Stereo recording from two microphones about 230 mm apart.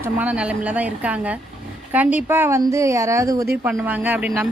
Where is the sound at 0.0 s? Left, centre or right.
Centre.